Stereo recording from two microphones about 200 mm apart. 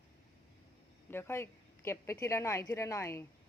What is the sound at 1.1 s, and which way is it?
Speech, 10° left (ahead or behind).